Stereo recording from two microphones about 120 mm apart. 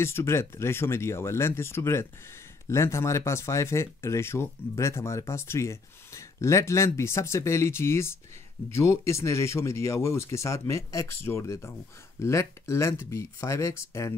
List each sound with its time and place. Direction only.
0.0 s speech: 20° left (ahead or behind)